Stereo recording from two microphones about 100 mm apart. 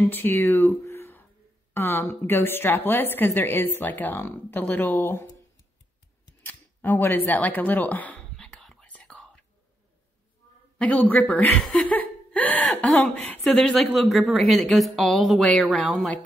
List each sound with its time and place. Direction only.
0.0 s a woman's voice: 20° left (ahead or behind)
6.4 s a sound: 20° left (ahead or behind)
10.8 s a man's voice: 15° left (ahead or behind)
11.6 s laughter: 5° left (ahead or behind)
13.5 s speech: 5° left (ahead or behind)